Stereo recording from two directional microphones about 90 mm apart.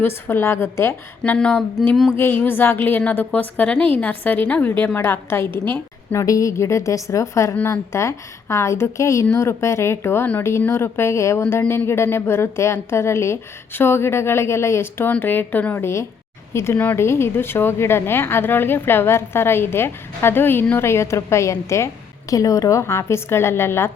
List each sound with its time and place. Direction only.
0.0 s a woman's voice: 25° left (ahead or behind)
1.2 s a woman's voice: 15° left (ahead or behind)
2.1 s a woman's voice: 25° left (ahead or behind)
6.1 s a woman's voice: 40° left (ahead or behind)